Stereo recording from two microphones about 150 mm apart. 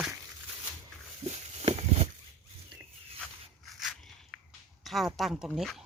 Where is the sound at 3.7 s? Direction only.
Centre (ahead or behind).